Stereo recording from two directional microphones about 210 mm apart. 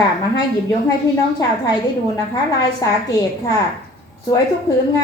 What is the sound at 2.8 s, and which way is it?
Speech, 15° left (ahead or behind).